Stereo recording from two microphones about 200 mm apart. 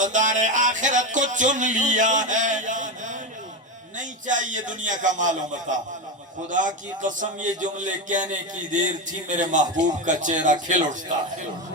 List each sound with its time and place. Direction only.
0.0 s speech: 40° right (ahead or behind)